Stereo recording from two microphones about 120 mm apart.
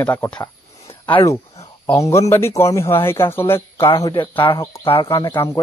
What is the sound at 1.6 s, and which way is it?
Speech, 25° left (ahead or behind).